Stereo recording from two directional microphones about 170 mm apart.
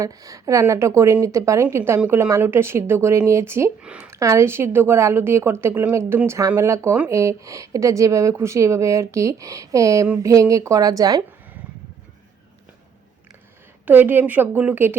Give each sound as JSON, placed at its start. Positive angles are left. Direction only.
{"t": 0.0, "sound": "a woman's voice", "side_deg": -20}
{"t": 13.8, "sound": "a woman's voice", "side_deg": -10}